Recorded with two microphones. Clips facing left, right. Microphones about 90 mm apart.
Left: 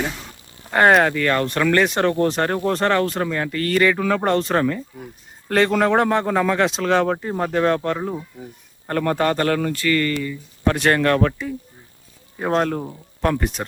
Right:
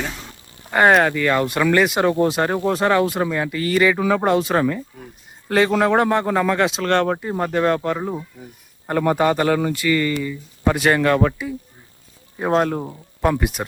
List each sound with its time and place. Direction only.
0.7 s speech: centre (ahead or behind)